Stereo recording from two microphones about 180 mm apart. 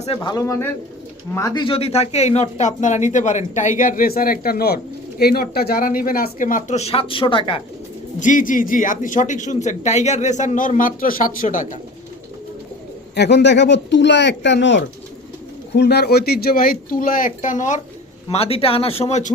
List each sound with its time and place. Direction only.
0.0 s a man's voice: 25° left (ahead or behind)
8.2 s a man's voice: 45° left (ahead or behind)
13.1 s speech: 70° left (ahead or behind)
15.7 s a man's voice: 65° left (ahead or behind); by 17.7 s 45° left (ahead or behind)
18.3 s speech: 35° left (ahead or behind)